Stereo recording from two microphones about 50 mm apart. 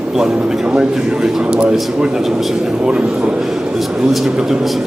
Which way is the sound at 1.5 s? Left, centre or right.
Centre.